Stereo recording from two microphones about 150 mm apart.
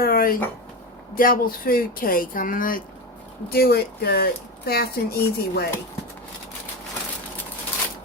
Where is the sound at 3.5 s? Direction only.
90° left.